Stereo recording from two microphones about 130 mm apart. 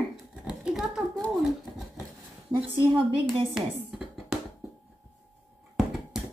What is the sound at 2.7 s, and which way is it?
Speech, 40° right (ahead or behind).